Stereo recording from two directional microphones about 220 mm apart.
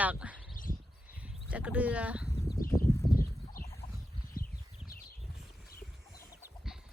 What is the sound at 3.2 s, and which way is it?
Horse, 40° left (ahead or behind).